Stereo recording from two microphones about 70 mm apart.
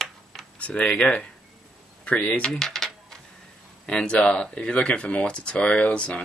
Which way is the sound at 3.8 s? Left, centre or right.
Centre.